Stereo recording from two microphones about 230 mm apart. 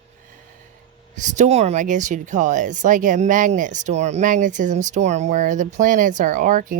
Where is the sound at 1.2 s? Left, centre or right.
Right.